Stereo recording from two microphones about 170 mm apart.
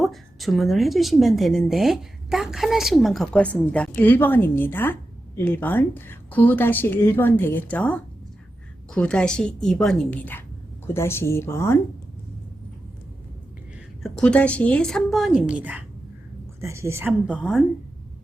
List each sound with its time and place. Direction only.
0.0 s a woman's voice: centre (ahead or behind)
14.0 s a woman's voice: 5° left (ahead or behind)